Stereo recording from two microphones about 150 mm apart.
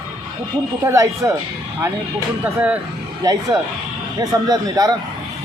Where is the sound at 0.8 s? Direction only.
20° right (ahead or behind).